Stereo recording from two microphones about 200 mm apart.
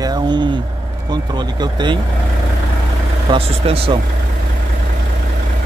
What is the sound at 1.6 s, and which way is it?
Speech, 20° right (ahead or behind).